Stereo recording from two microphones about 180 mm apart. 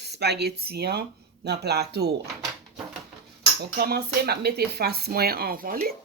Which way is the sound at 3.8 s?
60° right (ahead or behind).